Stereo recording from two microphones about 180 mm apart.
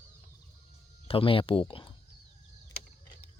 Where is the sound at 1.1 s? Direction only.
30° left (ahead or behind).